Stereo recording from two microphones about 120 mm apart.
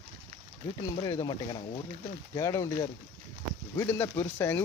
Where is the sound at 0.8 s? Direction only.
30° left (ahead or behind).